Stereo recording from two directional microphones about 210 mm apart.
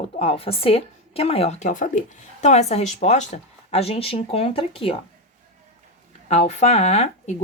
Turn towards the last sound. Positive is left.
turn(degrees=30)  # may be behind; listen again after turning